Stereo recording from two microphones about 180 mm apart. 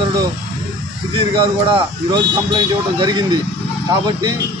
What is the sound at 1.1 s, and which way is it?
Speech, 30° right (ahead or behind).